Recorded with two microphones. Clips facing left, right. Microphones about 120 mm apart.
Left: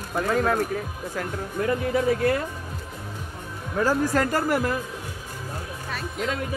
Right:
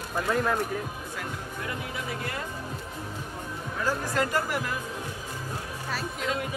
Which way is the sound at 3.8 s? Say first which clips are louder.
Left 6 dB; 45° left (ahead or behind).